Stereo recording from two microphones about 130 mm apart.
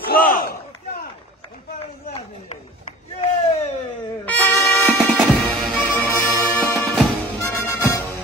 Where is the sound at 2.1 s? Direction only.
50° left (ahead or behind).